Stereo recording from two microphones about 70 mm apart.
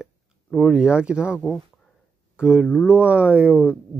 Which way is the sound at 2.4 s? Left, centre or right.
Centre.